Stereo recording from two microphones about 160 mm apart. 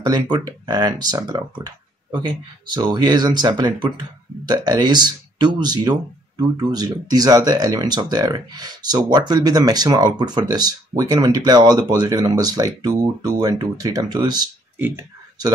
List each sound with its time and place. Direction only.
0.0 s speech: 25° right (ahead or behind)
14.8 s speech: 10° right (ahead or behind)